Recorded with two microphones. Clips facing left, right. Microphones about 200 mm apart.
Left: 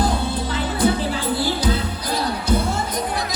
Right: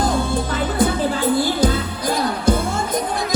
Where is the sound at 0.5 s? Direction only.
50° right (ahead or behind).